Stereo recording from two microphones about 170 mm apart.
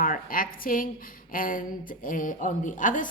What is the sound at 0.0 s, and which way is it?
A woman's voice, 55° left (ahead or behind).